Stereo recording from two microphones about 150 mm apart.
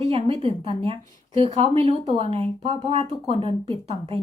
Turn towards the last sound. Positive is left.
turn(degrees=-40)  # may be behind; listen again after turning